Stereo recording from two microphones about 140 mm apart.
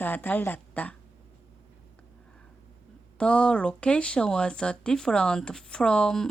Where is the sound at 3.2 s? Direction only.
10° left (ahead or behind).